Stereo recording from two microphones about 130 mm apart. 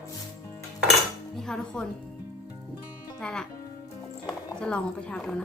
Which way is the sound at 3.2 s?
5° left (ahead or behind).